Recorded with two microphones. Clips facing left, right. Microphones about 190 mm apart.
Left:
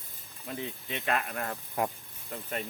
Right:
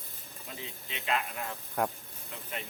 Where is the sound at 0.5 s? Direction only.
55° left (ahead or behind).